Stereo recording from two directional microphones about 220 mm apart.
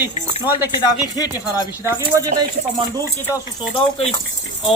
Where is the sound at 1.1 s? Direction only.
15° left (ahead or behind).